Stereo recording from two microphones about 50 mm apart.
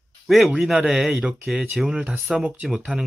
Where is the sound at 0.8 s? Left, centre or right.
Centre.